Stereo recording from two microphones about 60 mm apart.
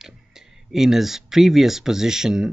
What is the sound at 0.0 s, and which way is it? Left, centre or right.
Speech, centre.